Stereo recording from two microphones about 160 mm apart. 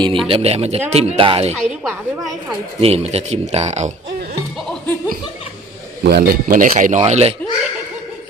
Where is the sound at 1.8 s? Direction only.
Centre (ahead or behind).